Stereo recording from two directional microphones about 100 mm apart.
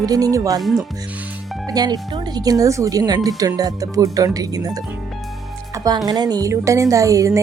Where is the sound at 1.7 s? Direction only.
40° right (ahead or behind).